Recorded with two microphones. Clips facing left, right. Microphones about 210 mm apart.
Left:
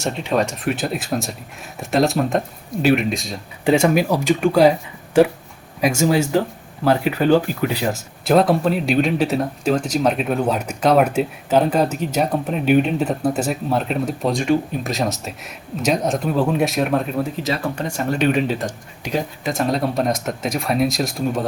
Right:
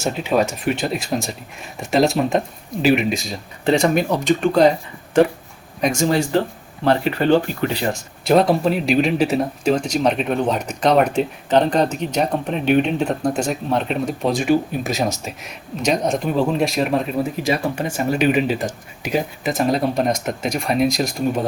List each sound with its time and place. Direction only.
0.0 s speech: 5° right (ahead or behind)
17.3 s speech: 10° right (ahead or behind)